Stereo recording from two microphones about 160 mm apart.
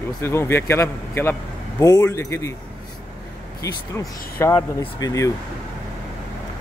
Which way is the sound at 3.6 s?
15° left (ahead or behind).